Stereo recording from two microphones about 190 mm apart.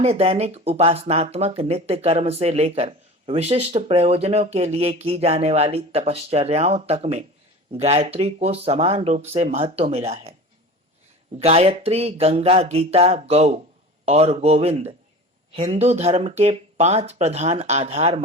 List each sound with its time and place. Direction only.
0.0 s speech: 30° right (ahead or behind)
11.3 s speech: 30° right (ahead or behind)